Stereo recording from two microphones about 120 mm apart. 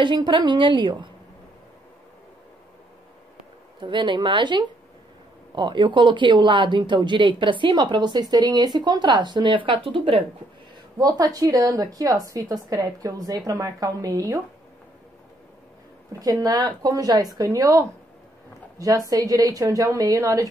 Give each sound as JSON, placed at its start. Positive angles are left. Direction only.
{"t": 0.0, "sound": "speech", "side_deg": -40}
{"t": 3.8, "sound": "speech", "side_deg": -40}
{"t": 11.0, "sound": "speech", "side_deg": -30}
{"t": 16.1, "sound": "speech", "side_deg": -30}